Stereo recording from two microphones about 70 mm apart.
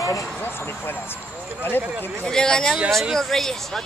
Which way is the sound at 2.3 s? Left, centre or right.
Centre.